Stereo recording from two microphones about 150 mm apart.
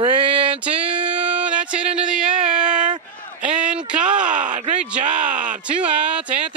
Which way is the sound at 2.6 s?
55° right (ahead or behind).